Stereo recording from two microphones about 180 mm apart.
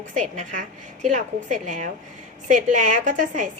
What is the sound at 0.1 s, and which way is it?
A woman's voice, 45° right (ahead or behind).